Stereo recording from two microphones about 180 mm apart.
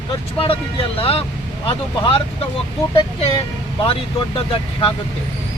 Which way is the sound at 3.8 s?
30° left (ahead or behind).